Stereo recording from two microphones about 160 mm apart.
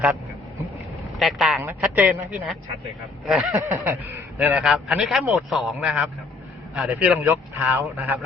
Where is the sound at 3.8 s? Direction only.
15° right (ahead or behind).